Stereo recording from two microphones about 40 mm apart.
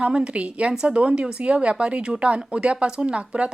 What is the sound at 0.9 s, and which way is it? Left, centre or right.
Speech, right.